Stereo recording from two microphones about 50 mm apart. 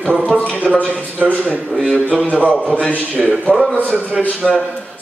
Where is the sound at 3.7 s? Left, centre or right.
Left.